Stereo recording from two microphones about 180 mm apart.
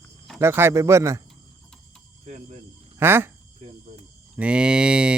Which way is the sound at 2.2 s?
40° right (ahead or behind).